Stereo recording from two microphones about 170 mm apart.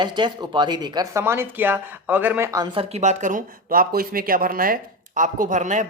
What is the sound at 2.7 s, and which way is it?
Speech, 35° right (ahead or behind).